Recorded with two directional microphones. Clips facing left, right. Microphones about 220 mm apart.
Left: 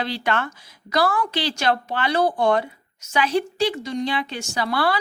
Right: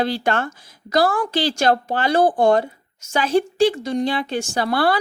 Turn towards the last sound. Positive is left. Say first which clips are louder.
# right 3 dB
turn(degrees=-50)  # may be behind; listen again after turning